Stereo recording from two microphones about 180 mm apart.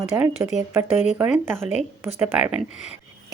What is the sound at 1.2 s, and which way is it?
Speech, 5° right (ahead or behind).